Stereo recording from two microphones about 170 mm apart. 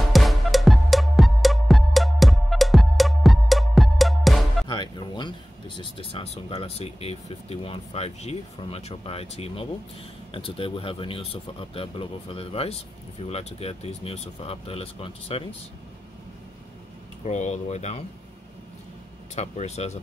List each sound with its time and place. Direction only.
0.1 s music: centre (ahead or behind)
4.6 s music: 25° left (ahead or behind)
5.8 s speech: 30° left (ahead or behind)
17.2 s speech: 40° left (ahead or behind)
19.3 s speech: 40° left (ahead or behind)